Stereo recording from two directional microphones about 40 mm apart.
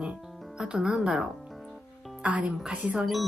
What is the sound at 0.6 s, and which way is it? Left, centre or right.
Music, centre.